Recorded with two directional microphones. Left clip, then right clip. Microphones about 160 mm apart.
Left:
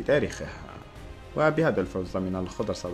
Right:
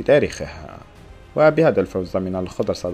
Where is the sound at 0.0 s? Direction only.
30° right (ahead or behind).